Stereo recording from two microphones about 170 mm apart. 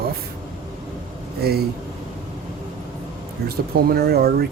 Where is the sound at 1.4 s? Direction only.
70° right (ahead or behind).